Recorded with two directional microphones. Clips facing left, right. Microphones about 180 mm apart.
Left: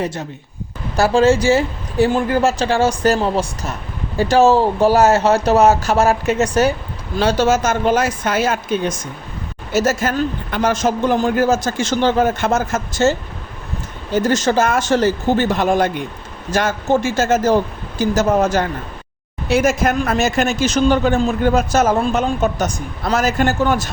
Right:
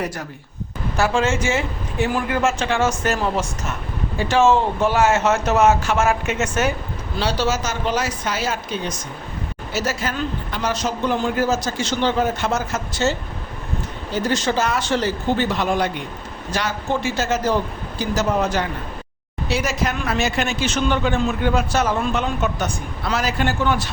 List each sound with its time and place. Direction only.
0.0 s speech: 25° left (ahead or behind)
0.9 s speech: 35° left (ahead or behind)
7.2 s speech: 50° left (ahead or behind)